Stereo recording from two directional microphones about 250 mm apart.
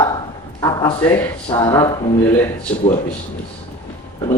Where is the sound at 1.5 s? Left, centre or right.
Centre.